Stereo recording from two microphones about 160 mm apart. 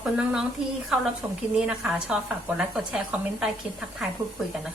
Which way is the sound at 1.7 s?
5° right (ahead or behind).